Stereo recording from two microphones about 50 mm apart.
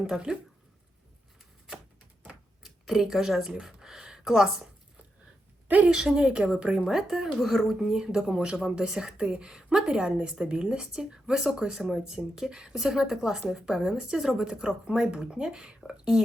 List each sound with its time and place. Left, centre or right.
0.1 s speech: centre
2.6 s speech: centre
5.9 s speech: centre
6.8 s speech: centre